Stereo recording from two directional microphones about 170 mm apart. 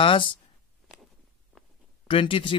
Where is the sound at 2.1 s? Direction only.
30° left (ahead or behind).